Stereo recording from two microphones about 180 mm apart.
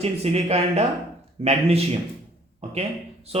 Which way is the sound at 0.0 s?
35° right (ahead or behind).